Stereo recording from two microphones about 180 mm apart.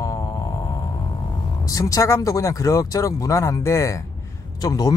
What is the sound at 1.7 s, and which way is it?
Speech, 20° left (ahead or behind).